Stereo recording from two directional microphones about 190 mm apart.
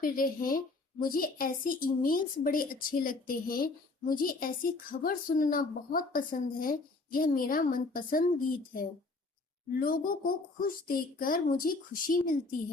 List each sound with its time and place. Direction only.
0.0 s a woman's voice: 50° left (ahead or behind)